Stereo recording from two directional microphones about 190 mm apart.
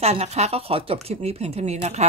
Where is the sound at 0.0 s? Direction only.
35° right (ahead or behind).